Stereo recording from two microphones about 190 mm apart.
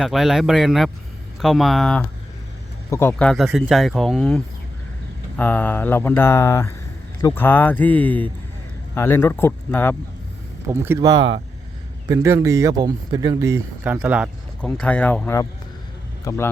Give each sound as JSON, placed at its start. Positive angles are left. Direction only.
{"t": 0.0, "sound": "speech", "side_deg": 0}
{"t": 10.7, "sound": "speech", "side_deg": -15}
{"t": 14.6, "sound": "a man's voice", "side_deg": 5}